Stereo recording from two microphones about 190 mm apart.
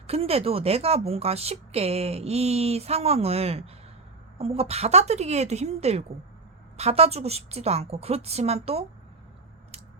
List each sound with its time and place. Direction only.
0.1 s speech: 30° right (ahead or behind)